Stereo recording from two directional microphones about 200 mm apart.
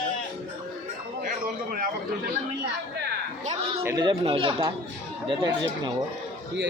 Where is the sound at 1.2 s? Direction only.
45° right (ahead or behind).